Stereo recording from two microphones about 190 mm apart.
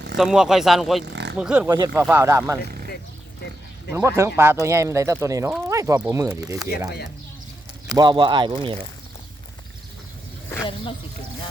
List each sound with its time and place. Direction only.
0.2 s speech: 5° right (ahead or behind)
3.9 s speech: 15° right (ahead or behind)
5.5 s speech: 5° right (ahead or behind)
5.7 s speech: 15° right (ahead or behind)
7.9 s speech: 25° right (ahead or behind)